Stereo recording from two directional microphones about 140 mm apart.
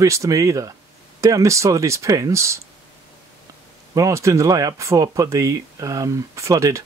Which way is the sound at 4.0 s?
20° right (ahead or behind).